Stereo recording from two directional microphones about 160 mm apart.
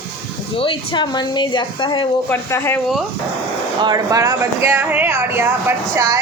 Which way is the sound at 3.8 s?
20° right (ahead or behind).